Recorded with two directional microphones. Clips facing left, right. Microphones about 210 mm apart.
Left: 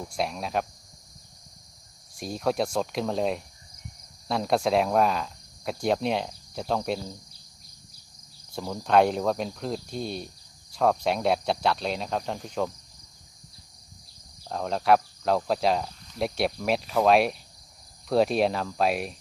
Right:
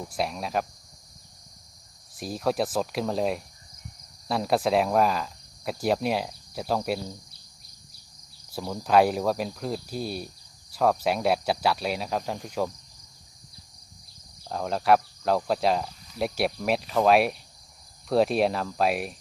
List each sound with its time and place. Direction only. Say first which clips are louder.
0.0 s speech: even; centre (ahead or behind)
2.1 s speech: even; centre (ahead or behind)
8.5 s speech: even; 5° right (ahead or behind)
14.4 s speech: even; centre (ahead or behind)